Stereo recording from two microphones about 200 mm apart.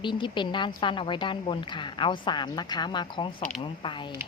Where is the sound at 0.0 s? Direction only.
25° left (ahead or behind).